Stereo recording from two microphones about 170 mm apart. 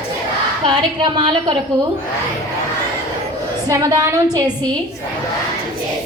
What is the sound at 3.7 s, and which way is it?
Speech, 20° right (ahead or behind).